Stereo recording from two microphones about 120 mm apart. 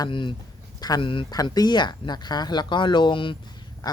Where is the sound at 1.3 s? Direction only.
35° left (ahead or behind).